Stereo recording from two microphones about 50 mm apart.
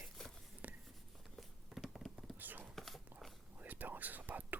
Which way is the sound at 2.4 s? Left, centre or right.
Right.